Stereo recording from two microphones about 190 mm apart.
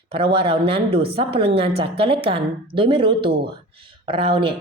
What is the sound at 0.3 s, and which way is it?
A woman's voice, 30° right (ahead or behind).